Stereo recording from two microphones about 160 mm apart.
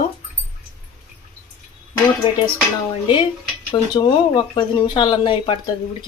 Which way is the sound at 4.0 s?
30° left (ahead or behind).